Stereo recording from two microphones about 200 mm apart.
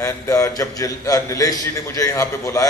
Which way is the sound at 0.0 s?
15° left (ahead or behind).